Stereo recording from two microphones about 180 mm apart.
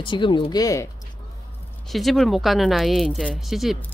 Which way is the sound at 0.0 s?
25° left (ahead or behind).